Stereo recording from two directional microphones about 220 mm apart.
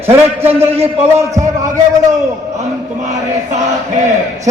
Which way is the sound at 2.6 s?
30° right (ahead or behind).